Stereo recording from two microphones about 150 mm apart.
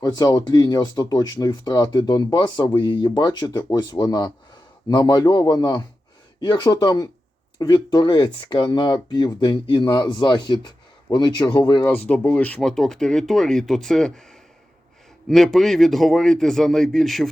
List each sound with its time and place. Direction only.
0.0 s speech: 25° left (ahead or behind)
11.8 s speech: 10° left (ahead or behind)
15.3 s speech: centre (ahead or behind)